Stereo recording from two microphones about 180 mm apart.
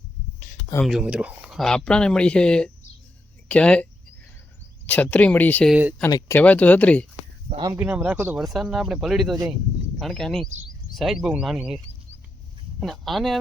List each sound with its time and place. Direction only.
0.9 s speech: 5° right (ahead or behind)
4.9 s speech: 10° left (ahead or behind)
6.0 s speech: 20° left (ahead or behind)
6.3 s speech: 10° left (ahead or behind)
7.5 s speech: 20° right (ahead or behind)
7.8 s speech: 10° right (ahead or behind)
12.8 s speech: centre (ahead or behind)